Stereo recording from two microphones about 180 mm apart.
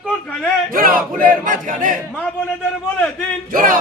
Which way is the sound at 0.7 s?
50° right (ahead or behind).